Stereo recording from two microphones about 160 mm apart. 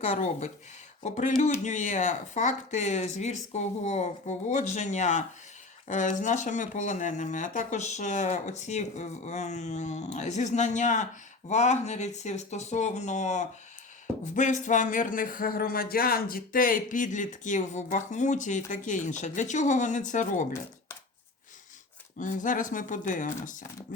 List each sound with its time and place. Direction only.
0.0 s speech: 45° left (ahead or behind)
22.2 s speech: 55° left (ahead or behind)